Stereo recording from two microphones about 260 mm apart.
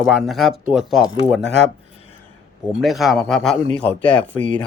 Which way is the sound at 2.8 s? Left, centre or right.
Centre.